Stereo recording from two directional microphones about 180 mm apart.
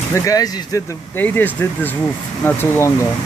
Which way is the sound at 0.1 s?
20° left (ahead or behind).